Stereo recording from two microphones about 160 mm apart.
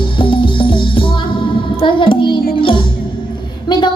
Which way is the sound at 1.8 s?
30° left (ahead or behind).